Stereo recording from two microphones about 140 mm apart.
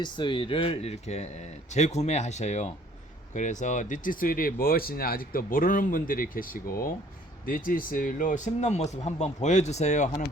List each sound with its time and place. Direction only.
0.0 s speech: 35° left (ahead or behind); by 10.2 s 60° left (ahead or behind)